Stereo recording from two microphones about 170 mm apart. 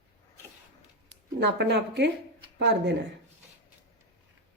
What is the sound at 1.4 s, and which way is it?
Speech, 85° right.